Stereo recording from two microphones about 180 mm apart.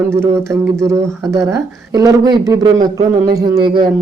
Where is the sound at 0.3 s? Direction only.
15° right (ahead or behind).